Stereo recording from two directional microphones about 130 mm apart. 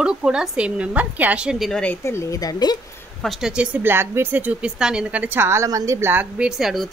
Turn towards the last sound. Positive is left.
turn(degrees=-5)  # may be behind; listen again after turning